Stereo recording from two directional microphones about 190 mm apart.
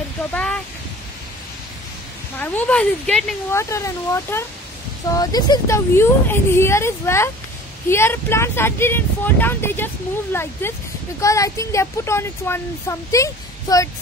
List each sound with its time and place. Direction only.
0.3 s a sound: 5° left (ahead or behind)
2.3 s speech: 10° left (ahead or behind)
3.5 s speech: 15° left (ahead or behind)